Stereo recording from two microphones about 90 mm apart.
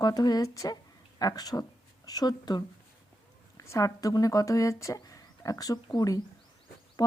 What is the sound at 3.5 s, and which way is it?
Speech, 35° left (ahead or behind).